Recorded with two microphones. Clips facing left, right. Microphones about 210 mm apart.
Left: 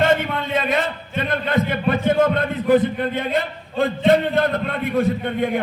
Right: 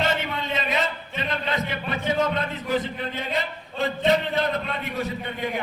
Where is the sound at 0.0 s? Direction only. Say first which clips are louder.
Left 7 dB; 55° left (ahead or behind).